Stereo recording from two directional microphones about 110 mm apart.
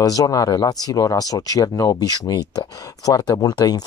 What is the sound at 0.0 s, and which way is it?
Speech, 35° left (ahead or behind).